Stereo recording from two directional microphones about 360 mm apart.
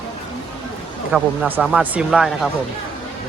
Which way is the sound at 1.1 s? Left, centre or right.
Centre.